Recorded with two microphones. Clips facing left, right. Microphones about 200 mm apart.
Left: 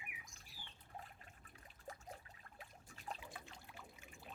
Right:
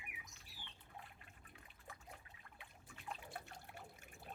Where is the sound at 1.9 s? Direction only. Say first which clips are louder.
Left 5 dB; 40° left (ahead or behind).